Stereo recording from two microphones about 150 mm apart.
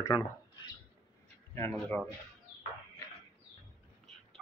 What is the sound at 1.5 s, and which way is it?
Speech, 10° left (ahead or behind).